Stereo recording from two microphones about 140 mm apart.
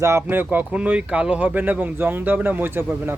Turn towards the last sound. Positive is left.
turn(degrees=-15)  # may be behind; listen again after turning